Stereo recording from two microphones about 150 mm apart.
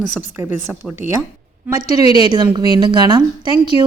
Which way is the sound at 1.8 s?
45° left (ahead or behind).